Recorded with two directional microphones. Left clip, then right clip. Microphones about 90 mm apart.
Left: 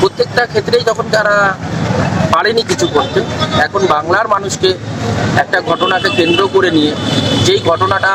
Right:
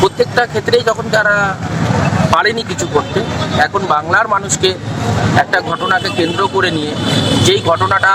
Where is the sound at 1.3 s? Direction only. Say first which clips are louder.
Left 2 dB; 35° left (ahead or behind).